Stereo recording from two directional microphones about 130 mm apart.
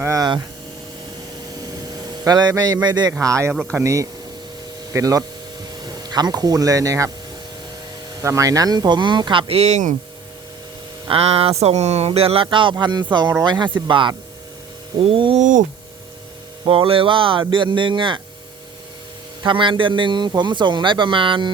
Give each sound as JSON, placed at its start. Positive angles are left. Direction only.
{"t": 0.0, "sound": "a man's voice", "side_deg": -25}
{"t": 2.2, "sound": "a man's voice", "side_deg": -30}
{"t": 8.2, "sound": "a man's voice", "side_deg": -25}
{"t": 11.1, "sound": "a man's voice", "side_deg": -50}
{"t": 15.4, "sound": "a sound", "side_deg": -80}
{"t": 16.6, "sound": "a man's voice", "side_deg": -40}
{"t": 19.4, "sound": "a man's voice", "side_deg": -40}